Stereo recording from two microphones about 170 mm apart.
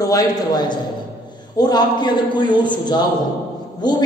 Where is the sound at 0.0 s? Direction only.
20° left (ahead or behind).